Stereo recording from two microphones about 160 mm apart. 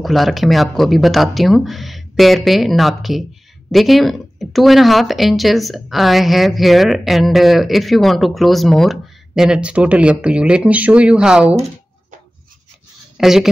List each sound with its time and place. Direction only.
0.0 s speech: centre (ahead or behind)
13.2 s speech: 5° right (ahead or behind)